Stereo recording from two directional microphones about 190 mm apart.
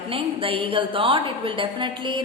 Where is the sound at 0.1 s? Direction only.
30° right (ahead or behind).